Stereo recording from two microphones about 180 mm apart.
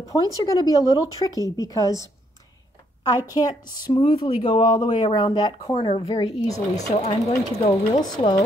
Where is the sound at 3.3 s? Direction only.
20° left (ahead or behind).